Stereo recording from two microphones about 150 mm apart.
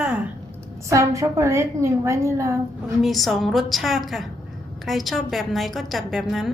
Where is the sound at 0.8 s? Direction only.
20° right (ahead or behind).